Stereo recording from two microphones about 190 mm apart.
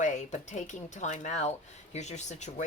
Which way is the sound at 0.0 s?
40° left (ahead or behind).